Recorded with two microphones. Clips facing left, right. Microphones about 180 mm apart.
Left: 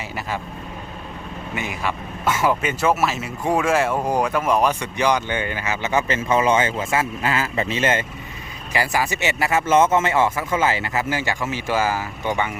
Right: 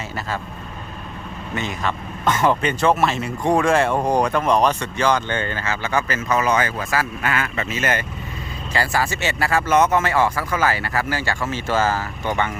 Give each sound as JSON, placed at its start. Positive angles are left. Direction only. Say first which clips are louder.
{"t": 1.5, "sound": "speech", "louder": "right 2 dB", "side_deg": 10}
{"t": 8.7, "sound": "speech", "louder": "even", "side_deg": 15}